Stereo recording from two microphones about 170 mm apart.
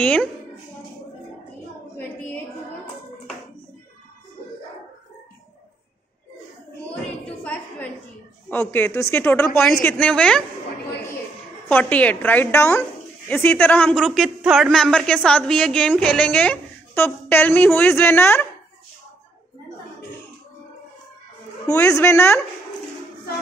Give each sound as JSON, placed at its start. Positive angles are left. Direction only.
{"t": 0.0, "sound": "speech", "side_deg": 5}
{"t": 8.5, "sound": "a woman's voice", "side_deg": 10}
{"t": 11.7, "sound": "a woman's voice", "side_deg": 10}
{"t": 21.7, "sound": "a woman's voice", "side_deg": 15}